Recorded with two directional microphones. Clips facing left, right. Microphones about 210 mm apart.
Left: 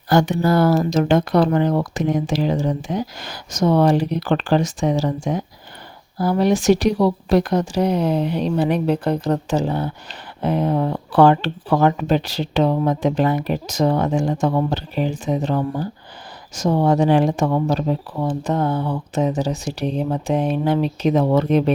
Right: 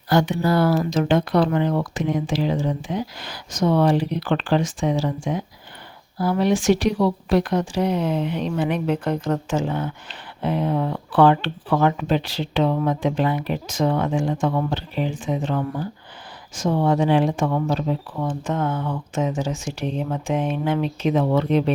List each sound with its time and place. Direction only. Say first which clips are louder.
0.1 s a woman's voice: left 3 dB; 45° left (ahead or behind)